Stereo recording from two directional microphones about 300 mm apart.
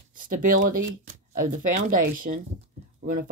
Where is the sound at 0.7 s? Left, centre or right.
Right.